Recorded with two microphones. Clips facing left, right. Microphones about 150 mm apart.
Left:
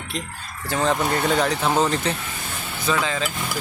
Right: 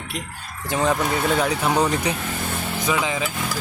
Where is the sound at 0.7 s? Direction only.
15° right (ahead or behind).